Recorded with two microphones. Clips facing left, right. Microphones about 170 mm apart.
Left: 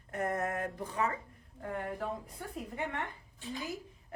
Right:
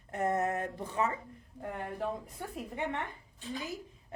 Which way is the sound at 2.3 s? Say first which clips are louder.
Right 1 dB; 20° right (ahead or behind).